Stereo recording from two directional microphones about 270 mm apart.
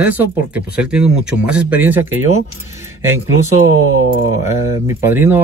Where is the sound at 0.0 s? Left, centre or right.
Centre.